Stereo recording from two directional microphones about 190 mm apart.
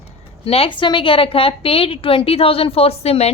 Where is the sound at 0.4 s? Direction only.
30° left (ahead or behind).